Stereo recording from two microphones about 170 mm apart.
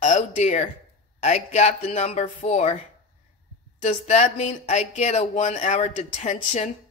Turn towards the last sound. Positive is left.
turn(degrees=45)  # may be behind; listen again after turning